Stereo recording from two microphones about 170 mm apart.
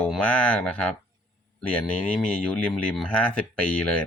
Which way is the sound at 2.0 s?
5° left (ahead or behind).